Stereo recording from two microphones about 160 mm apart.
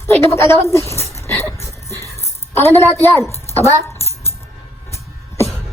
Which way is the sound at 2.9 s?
15° left (ahead or behind).